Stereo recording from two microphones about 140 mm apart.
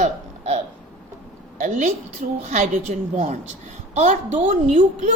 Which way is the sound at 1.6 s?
65° right (ahead or behind).